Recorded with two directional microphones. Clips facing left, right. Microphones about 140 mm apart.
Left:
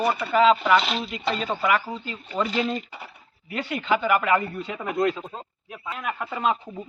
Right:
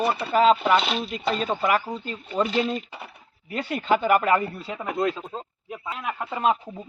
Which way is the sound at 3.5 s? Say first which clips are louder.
Right 1 dB; 40° right (ahead or behind).